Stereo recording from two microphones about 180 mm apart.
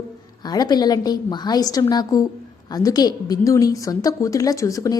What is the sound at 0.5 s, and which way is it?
A woman's voice, 20° left (ahead or behind).